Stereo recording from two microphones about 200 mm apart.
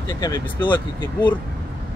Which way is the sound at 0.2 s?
20° left (ahead or behind).